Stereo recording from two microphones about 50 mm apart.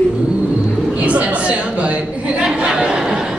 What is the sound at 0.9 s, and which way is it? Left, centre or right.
Chatter, right.